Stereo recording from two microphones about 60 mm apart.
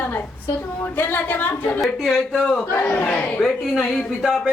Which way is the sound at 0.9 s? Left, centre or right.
Left.